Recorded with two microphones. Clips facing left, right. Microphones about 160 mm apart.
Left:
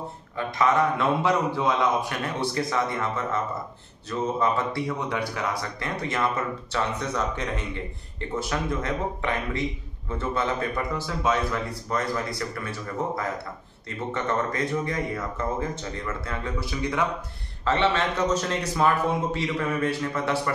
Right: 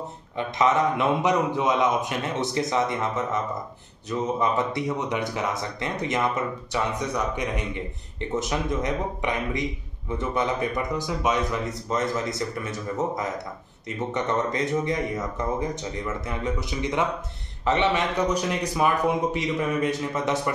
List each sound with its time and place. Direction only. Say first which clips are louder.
0.4 s a man's voice: right 1 dB; 20° right (ahead or behind)